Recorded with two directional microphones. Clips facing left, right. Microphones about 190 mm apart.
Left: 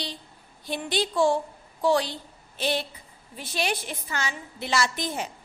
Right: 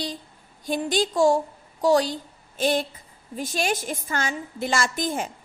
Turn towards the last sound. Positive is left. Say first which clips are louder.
# right 3 dB
turn(degrees=-45)  # may be behind; listen again after turning